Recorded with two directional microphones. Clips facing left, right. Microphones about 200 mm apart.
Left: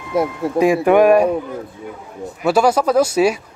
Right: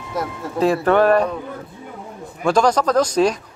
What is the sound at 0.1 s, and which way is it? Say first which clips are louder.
Speech: left 7 dB; 55° left (ahead or behind).